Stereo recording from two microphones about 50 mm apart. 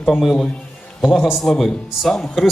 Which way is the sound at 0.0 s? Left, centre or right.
Centre.